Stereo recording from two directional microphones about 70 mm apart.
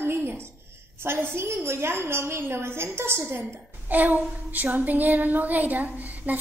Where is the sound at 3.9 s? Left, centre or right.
Right.